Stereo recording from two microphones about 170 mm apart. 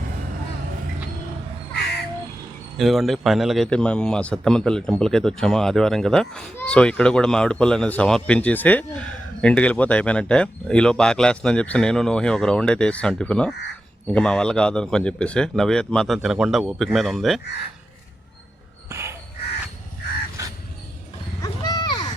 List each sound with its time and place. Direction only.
2.7 s a man's voice: centre (ahead or behind)
18.9 s crow: 15° right (ahead or behind)
21.4 s wild animals: 20° left (ahead or behind)